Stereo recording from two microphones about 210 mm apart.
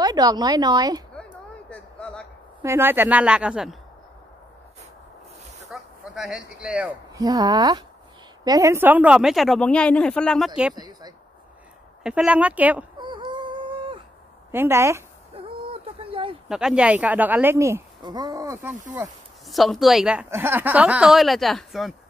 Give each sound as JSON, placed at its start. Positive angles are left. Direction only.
{"t": 0.0, "sound": "a woman's voice", "side_deg": -20}
{"t": 1.7, "sound": "a sound", "side_deg": 5}
{"t": 2.6, "sound": "speech", "side_deg": -10}
{"t": 5.7, "sound": "a sound", "side_deg": 0}
{"t": 7.2, "sound": "speech", "side_deg": -20}
{"t": 10.7, "sound": "a woman's voice", "side_deg": -20}
{"t": 12.0, "sound": "speech", "side_deg": -5}
{"t": 13.0, "sound": "a sound", "side_deg": -20}
{"t": 14.5, "sound": "speech", "side_deg": -10}
{"t": 15.3, "sound": "a sound", "side_deg": -25}
{"t": 16.4, "sound": "speech", "side_deg": -5}
{"t": 18.9, "sound": "speech", "side_deg": 0}